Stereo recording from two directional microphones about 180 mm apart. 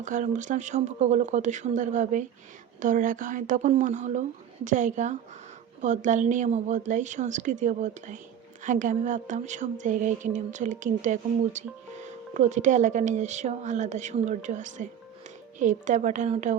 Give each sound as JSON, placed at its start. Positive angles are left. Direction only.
{"t": 0.0, "sound": "speech", "side_deg": -45}